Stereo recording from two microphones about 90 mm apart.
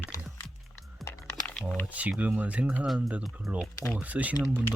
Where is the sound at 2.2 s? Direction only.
15° right (ahead or behind).